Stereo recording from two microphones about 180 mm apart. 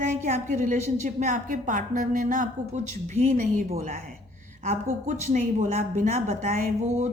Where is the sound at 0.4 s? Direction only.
45° right (ahead or behind).